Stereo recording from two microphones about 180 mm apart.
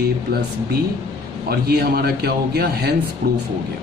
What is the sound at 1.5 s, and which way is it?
Speech, 60° right (ahead or behind).